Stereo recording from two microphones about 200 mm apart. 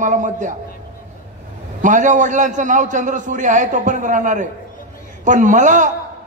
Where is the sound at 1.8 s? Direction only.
40° right (ahead or behind).